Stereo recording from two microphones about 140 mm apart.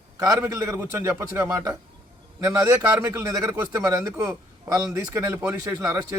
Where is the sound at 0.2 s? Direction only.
20° right (ahead or behind).